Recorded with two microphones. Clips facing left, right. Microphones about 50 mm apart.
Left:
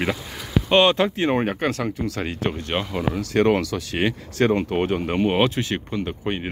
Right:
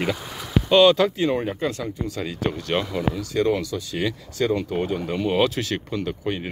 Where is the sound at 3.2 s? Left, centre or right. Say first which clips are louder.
Left 5 dB; left.